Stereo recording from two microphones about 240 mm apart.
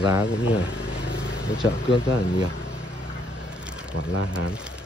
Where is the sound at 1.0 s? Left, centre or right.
Left.